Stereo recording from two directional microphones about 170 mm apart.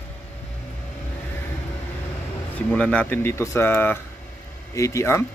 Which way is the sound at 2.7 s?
5° left (ahead or behind).